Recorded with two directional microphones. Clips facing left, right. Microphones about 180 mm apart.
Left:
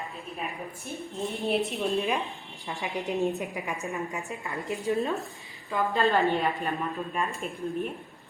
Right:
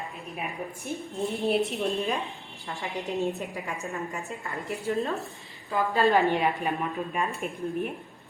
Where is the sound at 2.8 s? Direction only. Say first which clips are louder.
Left 1 dB; 15° left (ahead or behind).